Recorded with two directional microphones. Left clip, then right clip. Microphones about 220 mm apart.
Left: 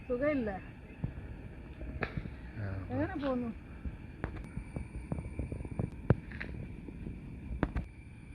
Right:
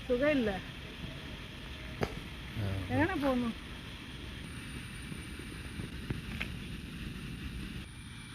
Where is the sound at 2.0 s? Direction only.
15° right (ahead or behind).